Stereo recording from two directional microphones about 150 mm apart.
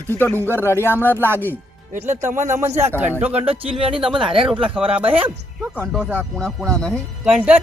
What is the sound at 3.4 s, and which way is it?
Speech, 40° right (ahead or behind).